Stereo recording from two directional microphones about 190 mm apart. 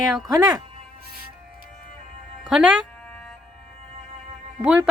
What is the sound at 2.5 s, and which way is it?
Speech, 5° right (ahead or behind).